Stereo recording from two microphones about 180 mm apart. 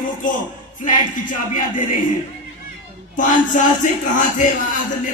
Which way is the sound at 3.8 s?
45° left (ahead or behind).